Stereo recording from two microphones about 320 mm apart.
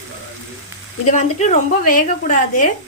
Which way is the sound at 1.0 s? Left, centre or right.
Left.